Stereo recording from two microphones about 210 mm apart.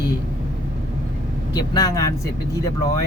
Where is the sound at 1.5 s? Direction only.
15° left (ahead or behind).